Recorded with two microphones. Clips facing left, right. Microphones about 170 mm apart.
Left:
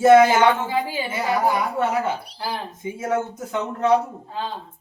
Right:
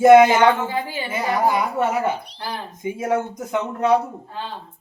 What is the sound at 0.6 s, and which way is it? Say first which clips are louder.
Speech: left 1 dB; 10° left (ahead or behind).